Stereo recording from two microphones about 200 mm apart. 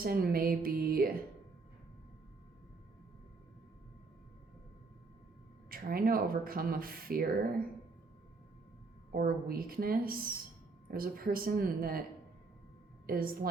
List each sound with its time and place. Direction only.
0.0 s speech: 45° right (ahead or behind)
5.7 s speech: 45° right (ahead or behind)
9.1 s speech: 45° right (ahead or behind)
13.1 s speech: 50° right (ahead or behind)